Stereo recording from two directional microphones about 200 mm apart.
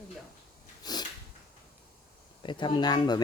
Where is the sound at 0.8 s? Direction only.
20° left (ahead or behind).